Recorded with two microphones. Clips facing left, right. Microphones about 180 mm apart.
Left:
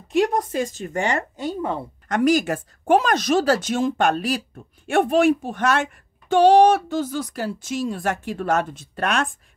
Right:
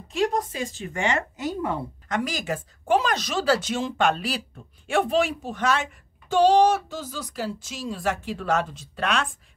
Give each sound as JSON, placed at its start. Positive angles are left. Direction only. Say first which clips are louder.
{"t": 0.1, "sound": "speech", "louder": "left 4 dB", "side_deg": 50}
{"t": 2.0, "sound": "speech", "louder": "left 9 dB", "side_deg": 50}